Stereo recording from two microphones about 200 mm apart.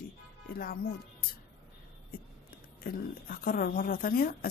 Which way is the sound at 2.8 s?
45° left (ahead or behind).